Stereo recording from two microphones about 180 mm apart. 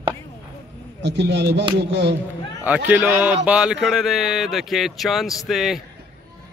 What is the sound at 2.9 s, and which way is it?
Speech, 10° right (ahead or behind).